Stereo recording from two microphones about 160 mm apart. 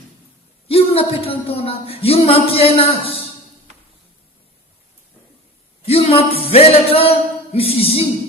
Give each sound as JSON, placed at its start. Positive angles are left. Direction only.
{"t": 0.7, "sound": "speech", "side_deg": 40}
{"t": 5.8, "sound": "a sound", "side_deg": 40}
{"t": 6.5, "sound": "music", "side_deg": 40}